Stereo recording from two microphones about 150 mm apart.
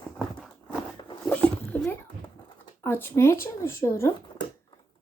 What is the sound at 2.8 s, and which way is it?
Speech, 15° left (ahead or behind).